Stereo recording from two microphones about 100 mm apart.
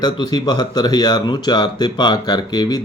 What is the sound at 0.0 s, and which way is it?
Speech, 45° left (ahead or behind).